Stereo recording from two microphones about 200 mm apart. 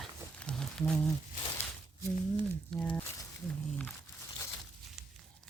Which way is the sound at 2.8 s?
5° left (ahead or behind).